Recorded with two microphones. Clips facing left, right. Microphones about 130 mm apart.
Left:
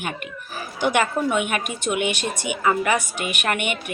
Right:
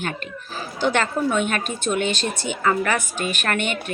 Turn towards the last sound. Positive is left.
turn(degrees=15)  # may be behind; listen again after turning